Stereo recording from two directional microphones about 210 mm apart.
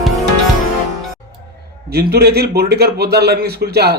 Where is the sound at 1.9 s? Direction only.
50° right (ahead or behind).